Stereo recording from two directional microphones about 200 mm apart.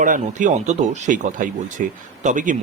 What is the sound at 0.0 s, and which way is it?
Speech, 40° right (ahead or behind).